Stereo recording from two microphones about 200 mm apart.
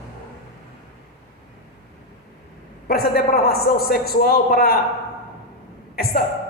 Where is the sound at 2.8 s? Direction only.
50° left (ahead or behind).